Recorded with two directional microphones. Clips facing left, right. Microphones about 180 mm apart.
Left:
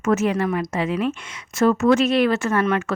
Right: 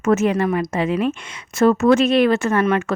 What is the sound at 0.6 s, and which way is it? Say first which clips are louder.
Speech: right 3 dB; 20° right (ahead or behind).